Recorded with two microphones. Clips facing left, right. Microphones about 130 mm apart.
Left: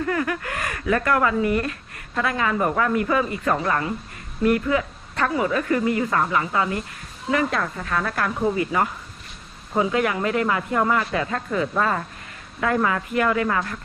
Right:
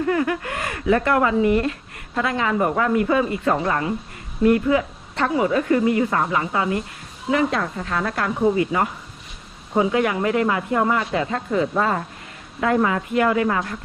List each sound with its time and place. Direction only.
0.1 s a woman's voice: 25° right (ahead or behind)